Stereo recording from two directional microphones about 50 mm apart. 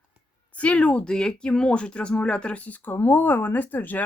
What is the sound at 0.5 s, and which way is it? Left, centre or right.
Speech, left.